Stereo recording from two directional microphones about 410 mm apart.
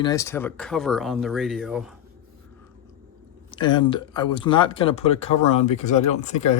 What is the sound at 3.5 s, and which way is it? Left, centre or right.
Speech, centre.